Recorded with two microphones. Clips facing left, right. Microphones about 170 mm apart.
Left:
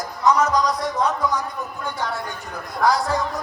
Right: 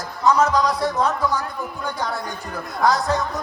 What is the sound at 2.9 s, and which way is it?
Speech, 20° right (ahead or behind).